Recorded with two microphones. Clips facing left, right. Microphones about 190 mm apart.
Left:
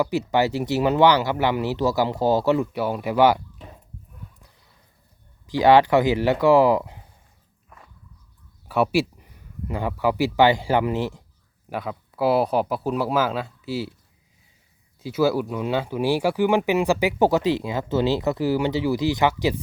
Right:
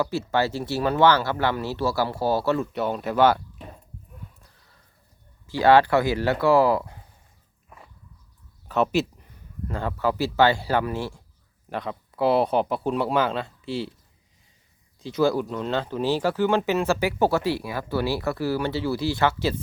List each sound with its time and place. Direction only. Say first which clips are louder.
0.0 s speech: left 3 dB; 15° left (ahead or behind)
4.4 s a sound: left 2 dB; 15° left (ahead or behind)
5.5 s speech: left 2 dB; 15° left (ahead or behind)
8.6 s speech: left 2 dB; 10° left (ahead or behind)
11.7 s speech: left 1 dB; 5° left (ahead or behind)
15.0 s speech: left 1 dB; 5° left (ahead or behind)